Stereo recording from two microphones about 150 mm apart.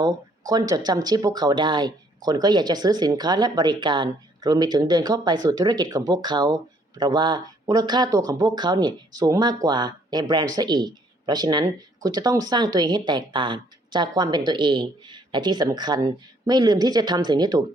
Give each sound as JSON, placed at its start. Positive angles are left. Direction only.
{"t": 0.0, "sound": "speech", "side_deg": -25}